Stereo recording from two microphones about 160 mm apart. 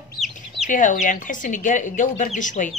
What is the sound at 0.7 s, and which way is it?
A woman's voice, 55° left (ahead or behind).